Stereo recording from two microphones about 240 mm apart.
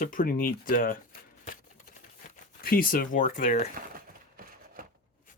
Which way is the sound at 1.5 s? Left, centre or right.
Left.